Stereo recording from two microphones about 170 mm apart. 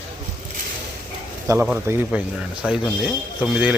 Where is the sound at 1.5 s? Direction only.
20° right (ahead or behind).